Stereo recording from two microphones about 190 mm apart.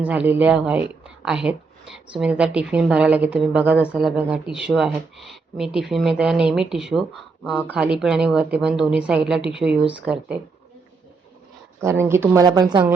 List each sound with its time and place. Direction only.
0.0 s a woman's voice: 5° right (ahead or behind)
11.8 s speech: 15° right (ahead or behind)